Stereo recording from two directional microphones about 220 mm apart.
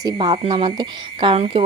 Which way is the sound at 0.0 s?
15° right (ahead or behind).